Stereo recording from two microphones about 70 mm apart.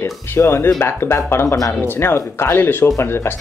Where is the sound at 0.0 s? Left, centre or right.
Left.